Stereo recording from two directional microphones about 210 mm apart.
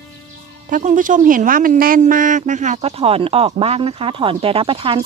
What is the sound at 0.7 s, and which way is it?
A man's voice, 40° right (ahead or behind).